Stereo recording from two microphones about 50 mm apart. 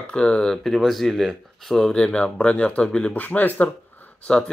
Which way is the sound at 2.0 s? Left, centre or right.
Centre.